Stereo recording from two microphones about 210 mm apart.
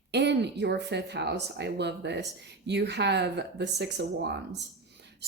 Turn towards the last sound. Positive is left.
turn(degrees=-55)  # may be behind; listen again after turning